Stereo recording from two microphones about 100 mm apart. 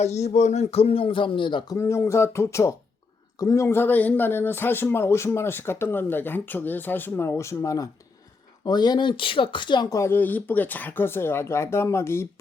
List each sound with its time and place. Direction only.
0.0 s speech: 90° left; by 1.7 s 55° left (ahead or behind)
1.7 s speech: 25° left (ahead or behind); by 9.9 s 50° left (ahead or behind)
9.9 s speech: 25° left (ahead or behind)